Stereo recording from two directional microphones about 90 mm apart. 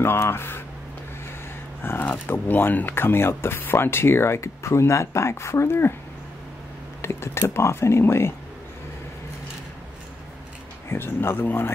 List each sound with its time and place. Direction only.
0.0 s speech: 25° left (ahead or behind)
1.8 s speech: 20° left (ahead or behind)
7.0 s speech: 25° left (ahead or behind)
10.9 s speech: 25° left (ahead or behind)